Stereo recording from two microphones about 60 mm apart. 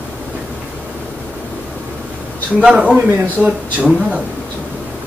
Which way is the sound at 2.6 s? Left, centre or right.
Centre.